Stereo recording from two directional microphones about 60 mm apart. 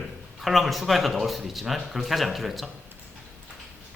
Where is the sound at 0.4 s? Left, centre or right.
Centre.